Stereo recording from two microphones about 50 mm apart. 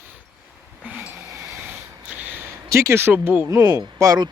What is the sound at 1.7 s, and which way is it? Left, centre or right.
Snort, right.